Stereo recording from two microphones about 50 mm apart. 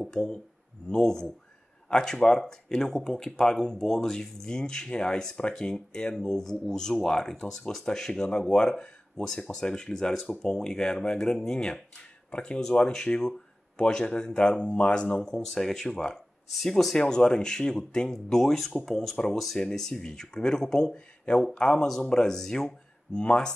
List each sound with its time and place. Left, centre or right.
0.0 s speech: centre